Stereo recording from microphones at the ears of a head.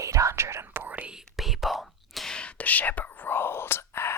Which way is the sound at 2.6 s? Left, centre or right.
Left.